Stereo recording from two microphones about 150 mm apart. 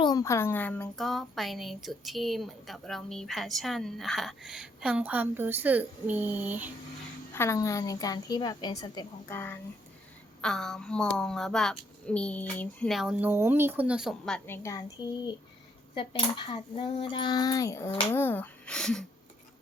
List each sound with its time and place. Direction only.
0.0 s speech: 25° left (ahead or behind)
0.9 s a woman's voice: centre (ahead or behind)
7.3 s a woman's voice: 20° left (ahead or behind)
12.9 s a woman's voice: 5° right (ahead or behind)
14.4 s a woman's voice: 15° left (ahead or behind)
16.0 s cutlery: 35° left (ahead or behind); by 17.9 s 20° left (ahead or behind)
18.1 s speech: 15° left (ahead or behind)